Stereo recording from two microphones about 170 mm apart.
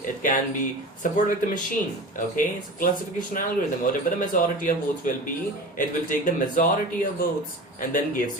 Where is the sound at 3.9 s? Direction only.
50° left (ahead or behind).